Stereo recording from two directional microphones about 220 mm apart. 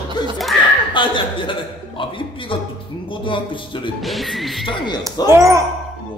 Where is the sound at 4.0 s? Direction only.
Centre (ahead or behind).